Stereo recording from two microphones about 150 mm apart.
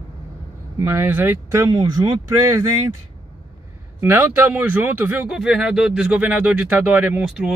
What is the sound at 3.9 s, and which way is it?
Speech, 15° right (ahead or behind).